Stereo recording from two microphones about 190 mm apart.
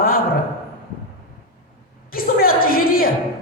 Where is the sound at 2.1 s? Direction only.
50° left (ahead or behind).